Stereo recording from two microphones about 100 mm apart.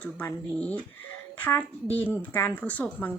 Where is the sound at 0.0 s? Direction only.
15° left (ahead or behind).